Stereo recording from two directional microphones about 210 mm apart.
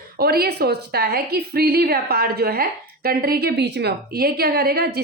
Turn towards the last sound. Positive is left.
turn(degrees=-45)  # may be behind; listen again after turning